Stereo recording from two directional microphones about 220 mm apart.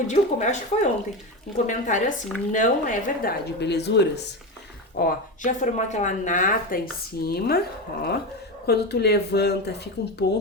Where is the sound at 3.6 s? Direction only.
50° left (ahead or behind).